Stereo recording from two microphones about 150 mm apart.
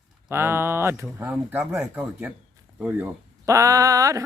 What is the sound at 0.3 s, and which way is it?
Speech, 15° right (ahead or behind).